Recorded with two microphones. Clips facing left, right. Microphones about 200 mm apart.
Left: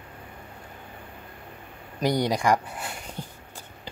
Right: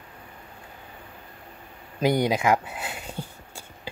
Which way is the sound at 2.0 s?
20° right (ahead or behind).